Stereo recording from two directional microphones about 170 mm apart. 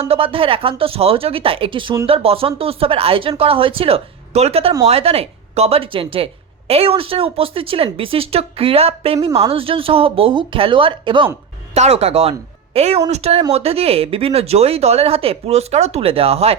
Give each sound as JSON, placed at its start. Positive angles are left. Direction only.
{"t": 0.0, "sound": "a woman's voice", "side_deg": -35}